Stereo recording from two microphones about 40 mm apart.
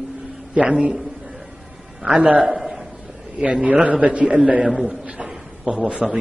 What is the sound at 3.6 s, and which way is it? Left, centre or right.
Speech, right.